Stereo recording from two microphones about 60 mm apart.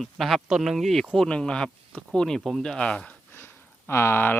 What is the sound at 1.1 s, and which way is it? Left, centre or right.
Speech, centre.